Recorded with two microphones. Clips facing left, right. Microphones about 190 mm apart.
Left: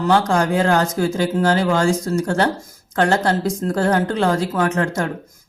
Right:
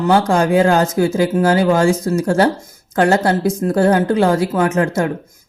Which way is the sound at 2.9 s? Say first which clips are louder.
Right 3 dB; 25° right (ahead or behind).